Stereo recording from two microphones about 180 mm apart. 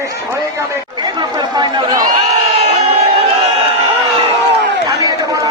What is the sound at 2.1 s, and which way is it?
Crowd, 40° right (ahead or behind).